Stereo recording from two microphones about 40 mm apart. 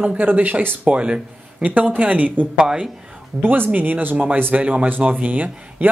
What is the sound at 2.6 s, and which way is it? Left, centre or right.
Speech, centre.